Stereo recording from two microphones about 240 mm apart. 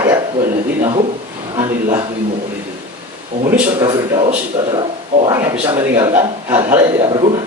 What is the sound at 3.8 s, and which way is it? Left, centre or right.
Speech, right.